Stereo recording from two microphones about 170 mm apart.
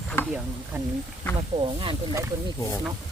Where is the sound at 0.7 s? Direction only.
10° right (ahead or behind).